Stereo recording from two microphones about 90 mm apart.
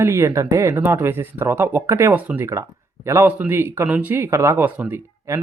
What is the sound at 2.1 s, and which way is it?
Speech, 20° right (ahead or behind).